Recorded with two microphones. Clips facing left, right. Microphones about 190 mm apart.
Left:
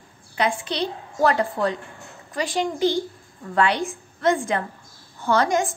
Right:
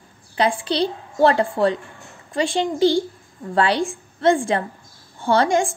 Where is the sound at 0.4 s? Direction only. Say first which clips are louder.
Right 4 dB; 30° right (ahead or behind).